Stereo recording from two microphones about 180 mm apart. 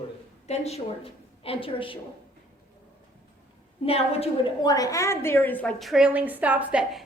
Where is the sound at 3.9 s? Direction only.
35° left (ahead or behind).